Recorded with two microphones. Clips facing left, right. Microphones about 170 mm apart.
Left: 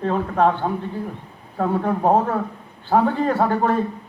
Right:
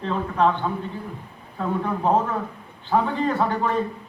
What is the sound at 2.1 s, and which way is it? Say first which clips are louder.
Speech: left 3 dB; 50° left (ahead or behind).